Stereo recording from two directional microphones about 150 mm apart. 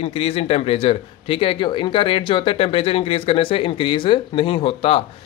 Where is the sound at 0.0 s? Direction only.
40° left (ahead or behind).